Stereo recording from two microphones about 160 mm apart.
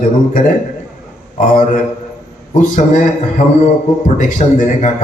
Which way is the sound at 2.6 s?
55° left (ahead or behind).